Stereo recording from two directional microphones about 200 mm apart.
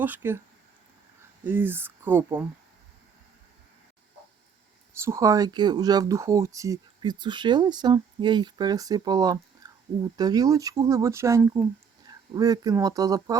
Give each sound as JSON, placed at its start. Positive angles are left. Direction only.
{"t": 0.0, "sound": "speech", "side_deg": -10}
{"t": 1.5, "sound": "speech", "side_deg": -10}
{"t": 4.9, "sound": "speech", "side_deg": -15}